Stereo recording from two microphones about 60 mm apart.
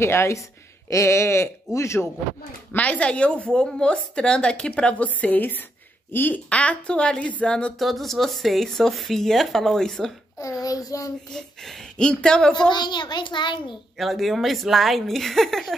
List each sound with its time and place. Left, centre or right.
0.0 s speech: left
2.7 s a woman's voice: left
7.8 s speech: centre
10.4 s a child's voice: left
11.3 s speech: centre
13.9 s speech: centre